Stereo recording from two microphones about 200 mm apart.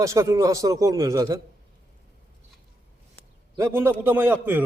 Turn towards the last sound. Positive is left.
turn(degrees=-10)  # may be behind; listen again after turning